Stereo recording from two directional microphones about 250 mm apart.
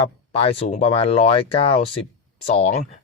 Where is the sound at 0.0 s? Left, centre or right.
Left.